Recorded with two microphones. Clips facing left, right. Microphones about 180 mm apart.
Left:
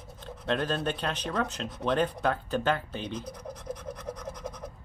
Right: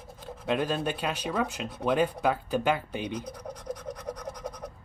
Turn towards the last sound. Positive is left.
turn(degrees=5)  # may be behind; listen again after turning